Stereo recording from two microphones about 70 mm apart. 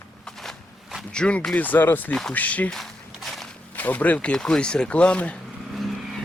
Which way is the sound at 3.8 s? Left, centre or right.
Left.